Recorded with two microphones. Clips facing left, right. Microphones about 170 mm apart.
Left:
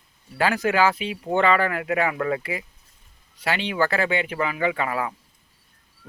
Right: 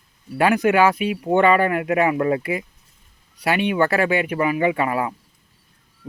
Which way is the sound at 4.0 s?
25° left (ahead or behind).